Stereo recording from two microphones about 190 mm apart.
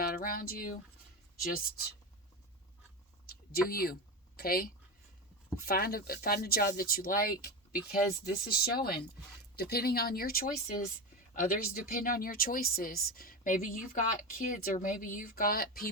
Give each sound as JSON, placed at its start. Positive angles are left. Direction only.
{"t": 0.0, "sound": "speech", "side_deg": 50}
{"t": 3.2, "sound": "a sound", "side_deg": 50}
{"t": 4.4, "sound": "speech", "side_deg": 50}